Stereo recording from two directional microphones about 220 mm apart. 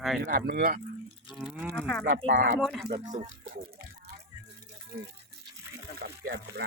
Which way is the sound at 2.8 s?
35° right (ahead or behind).